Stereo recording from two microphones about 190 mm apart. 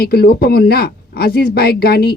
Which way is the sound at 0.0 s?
55° left (ahead or behind).